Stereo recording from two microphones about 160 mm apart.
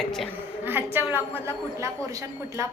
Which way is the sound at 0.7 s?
15° right (ahead or behind).